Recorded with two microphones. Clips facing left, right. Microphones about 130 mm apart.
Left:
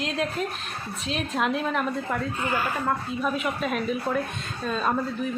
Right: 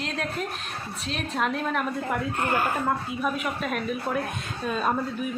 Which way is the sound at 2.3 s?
55° right (ahead or behind).